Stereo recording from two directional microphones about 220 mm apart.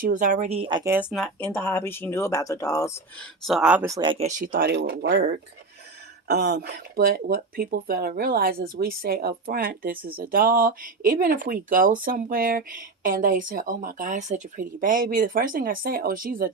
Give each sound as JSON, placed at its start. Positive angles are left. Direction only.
{"t": 0.0, "sound": "speech", "side_deg": -35}
{"t": 1.1, "sound": "speech", "side_deg": 5}
{"t": 3.4, "sound": "speech", "side_deg": 0}
{"t": 4.3, "sound": "speech", "side_deg": -40}